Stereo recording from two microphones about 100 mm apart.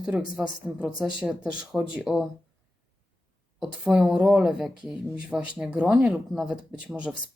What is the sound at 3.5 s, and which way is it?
Speech, 5° right (ahead or behind).